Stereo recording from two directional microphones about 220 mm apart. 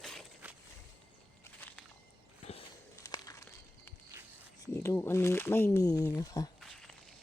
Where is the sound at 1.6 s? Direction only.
10° left (ahead or behind).